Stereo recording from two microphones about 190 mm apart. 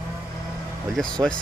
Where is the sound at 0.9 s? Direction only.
5° left (ahead or behind).